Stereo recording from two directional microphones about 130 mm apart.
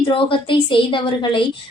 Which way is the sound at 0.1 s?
40° left (ahead or behind).